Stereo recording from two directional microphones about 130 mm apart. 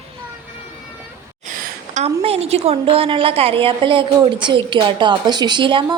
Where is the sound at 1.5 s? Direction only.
65° right (ahead or behind).